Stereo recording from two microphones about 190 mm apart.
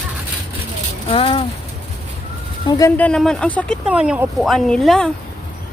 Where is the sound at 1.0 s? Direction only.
30° left (ahead or behind).